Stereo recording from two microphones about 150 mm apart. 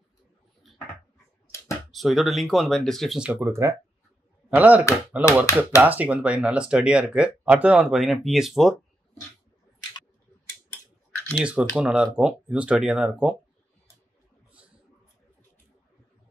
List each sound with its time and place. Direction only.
1.9 s speech: centre (ahead or behind)
3.3 s speech: 20° right (ahead or behind); by 8.7 s centre (ahead or behind)
11.4 s speech: 5° right (ahead or behind)